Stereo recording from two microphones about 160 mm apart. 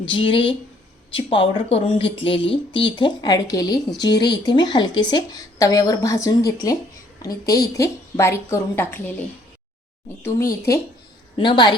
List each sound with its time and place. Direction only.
0.0 s a woman's voice: 35° left (ahead or behind); by 9.1 s 15° left (ahead or behind)
10.2 s a woman's voice: 20° left (ahead or behind)
11.3 s a woman's voice: 30° left (ahead or behind)